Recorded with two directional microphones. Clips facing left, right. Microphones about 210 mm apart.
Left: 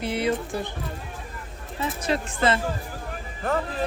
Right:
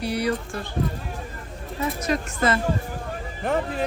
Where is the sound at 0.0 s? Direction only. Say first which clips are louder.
Even; 20° left (ahead or behind).